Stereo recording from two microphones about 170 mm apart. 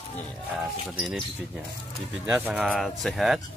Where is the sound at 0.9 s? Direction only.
Centre (ahead or behind).